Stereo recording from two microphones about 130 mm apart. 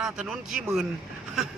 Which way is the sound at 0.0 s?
5° right (ahead or behind).